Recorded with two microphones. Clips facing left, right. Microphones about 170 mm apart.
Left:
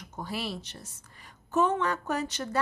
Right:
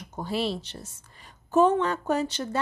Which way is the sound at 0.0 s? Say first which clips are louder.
Right 6 dB; 30° right (ahead or behind).